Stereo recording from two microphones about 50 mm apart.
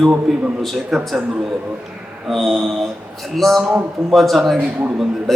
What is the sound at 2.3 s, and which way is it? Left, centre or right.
A man's voice, centre.